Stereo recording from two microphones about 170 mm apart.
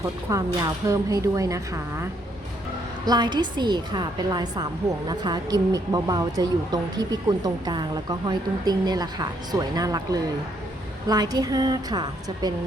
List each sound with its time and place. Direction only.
0.3 s a woman's voice: 20° right (ahead or behind)
3.1 s a woman's voice: 25° right (ahead or behind)